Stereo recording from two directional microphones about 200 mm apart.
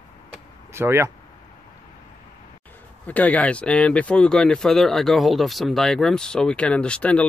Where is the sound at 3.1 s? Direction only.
5° left (ahead or behind).